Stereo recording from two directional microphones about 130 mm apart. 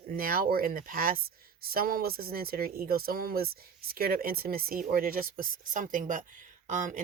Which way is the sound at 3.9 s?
90° right.